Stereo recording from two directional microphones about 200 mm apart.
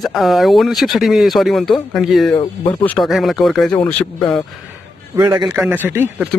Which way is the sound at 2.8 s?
5° left (ahead or behind).